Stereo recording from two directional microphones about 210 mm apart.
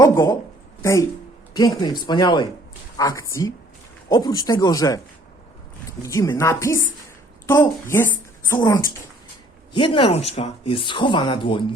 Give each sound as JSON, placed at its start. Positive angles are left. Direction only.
{"t": 0.0, "sound": "speech", "side_deg": 15}
{"t": 6.0, "sound": "a woman's voice", "side_deg": 15}
{"t": 9.7, "sound": "speech", "side_deg": 25}